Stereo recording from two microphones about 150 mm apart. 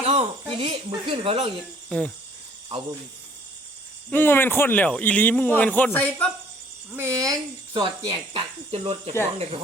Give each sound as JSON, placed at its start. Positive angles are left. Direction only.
{"t": 0.0, "sound": "speech", "side_deg": -40}
{"t": 1.9, "sound": "cricket", "side_deg": 5}
{"t": 4.1, "sound": "speech", "side_deg": 15}
{"t": 6.9, "sound": "speech", "side_deg": -20}